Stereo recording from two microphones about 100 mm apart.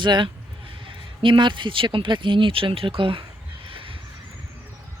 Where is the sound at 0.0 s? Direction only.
50° right (ahead or behind).